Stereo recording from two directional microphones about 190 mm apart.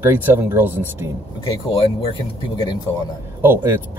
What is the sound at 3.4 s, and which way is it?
Speech, 10° right (ahead or behind).